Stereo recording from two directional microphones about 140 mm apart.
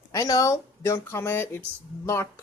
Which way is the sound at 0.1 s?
25° left (ahead or behind).